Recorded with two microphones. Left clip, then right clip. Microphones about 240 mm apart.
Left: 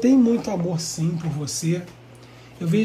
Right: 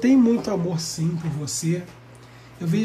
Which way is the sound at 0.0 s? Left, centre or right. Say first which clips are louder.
Even; centre.